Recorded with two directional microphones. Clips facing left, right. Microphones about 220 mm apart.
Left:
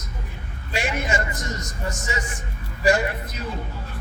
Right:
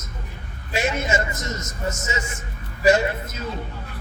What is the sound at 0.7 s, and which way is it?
A man's voice, 25° right (ahead or behind).